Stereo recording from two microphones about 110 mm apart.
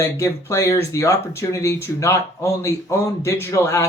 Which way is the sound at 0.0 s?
30° left (ahead or behind).